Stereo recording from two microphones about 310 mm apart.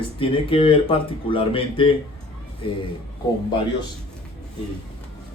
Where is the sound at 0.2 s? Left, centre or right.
Centre.